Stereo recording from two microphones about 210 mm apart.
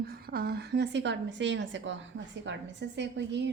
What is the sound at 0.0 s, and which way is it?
A woman's voice, 45° right (ahead or behind).